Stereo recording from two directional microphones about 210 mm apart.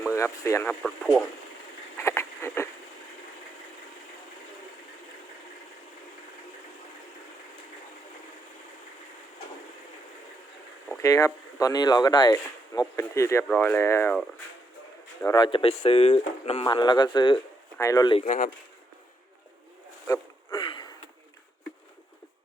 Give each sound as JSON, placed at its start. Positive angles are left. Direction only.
{"t": 0.1, "sound": "speech", "side_deg": 15}
{"t": 2.0, "sound": "a sound", "side_deg": 15}
{"t": 10.9, "sound": "speech", "side_deg": 15}
{"t": 15.2, "sound": "speech", "side_deg": 20}
{"t": 16.6, "sound": "speech", "side_deg": 20}
{"t": 18.3, "sound": "speech", "side_deg": 40}
{"t": 20.1, "sound": "a sound", "side_deg": 20}